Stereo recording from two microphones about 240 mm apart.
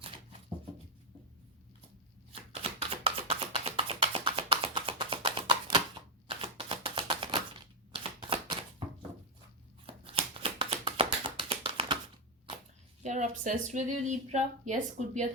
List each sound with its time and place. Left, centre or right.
2.3 s a sound: right
6.2 s typewriter: right
7.9 s shuffling cards: right
9.8 s shuffling cards: right
13.0 s speech: right